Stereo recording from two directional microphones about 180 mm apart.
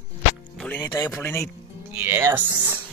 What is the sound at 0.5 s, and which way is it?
Music, 5° left (ahead or behind).